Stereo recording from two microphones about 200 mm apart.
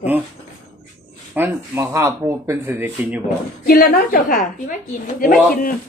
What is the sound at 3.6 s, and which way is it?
A woman's voice, 45° left (ahead or behind).